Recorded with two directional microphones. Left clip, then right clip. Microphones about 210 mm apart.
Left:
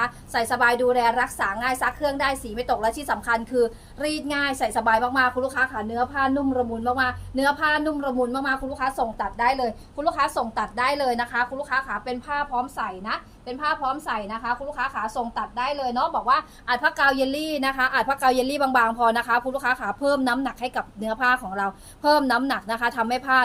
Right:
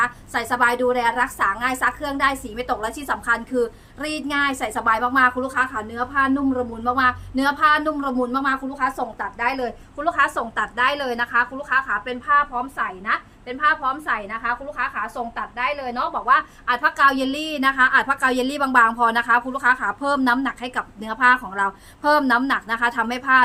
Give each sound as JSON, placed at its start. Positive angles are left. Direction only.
{"t": 0.0, "sound": "a woman's voice", "side_deg": -15}